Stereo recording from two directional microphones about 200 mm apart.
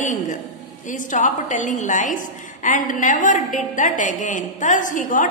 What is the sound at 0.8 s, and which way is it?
A woman's voice, 40° left (ahead or behind).